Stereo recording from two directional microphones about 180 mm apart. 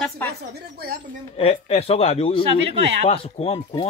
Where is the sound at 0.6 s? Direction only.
60° right (ahead or behind).